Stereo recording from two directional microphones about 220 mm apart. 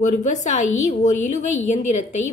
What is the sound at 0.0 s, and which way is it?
Speech, 35° left (ahead or behind).